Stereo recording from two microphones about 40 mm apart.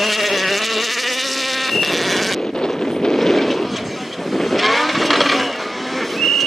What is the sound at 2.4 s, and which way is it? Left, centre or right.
Vehicle, centre.